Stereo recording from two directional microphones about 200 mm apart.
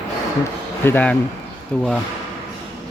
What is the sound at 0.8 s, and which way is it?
Speech, 10° left (ahead or behind).